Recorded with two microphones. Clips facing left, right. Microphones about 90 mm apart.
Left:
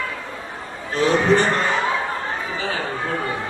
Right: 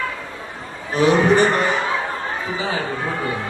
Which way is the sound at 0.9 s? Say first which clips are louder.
Right 2 dB; 15° right (ahead or behind).